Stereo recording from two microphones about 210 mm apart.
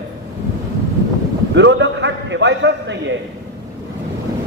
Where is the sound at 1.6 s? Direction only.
60° right (ahead or behind).